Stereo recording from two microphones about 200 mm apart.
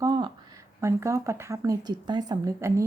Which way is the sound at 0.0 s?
20° right (ahead or behind).